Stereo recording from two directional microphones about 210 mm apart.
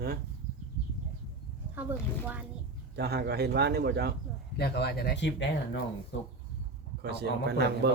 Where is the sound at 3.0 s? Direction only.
50° right (ahead or behind).